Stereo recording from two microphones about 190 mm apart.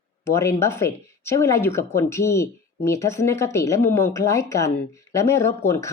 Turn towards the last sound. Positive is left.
turn(degrees=15)  # may be behind; listen again after turning